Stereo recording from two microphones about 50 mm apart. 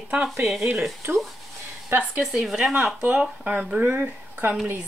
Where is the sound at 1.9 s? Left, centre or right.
Right.